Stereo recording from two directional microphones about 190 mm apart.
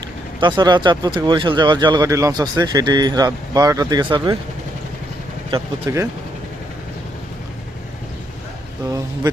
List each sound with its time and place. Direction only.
0.3 s speech: 25° right (ahead or behind)
5.5 s speech: 15° right (ahead or behind)